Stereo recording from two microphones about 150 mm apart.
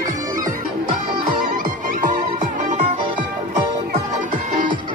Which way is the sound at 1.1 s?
65° right (ahead or behind).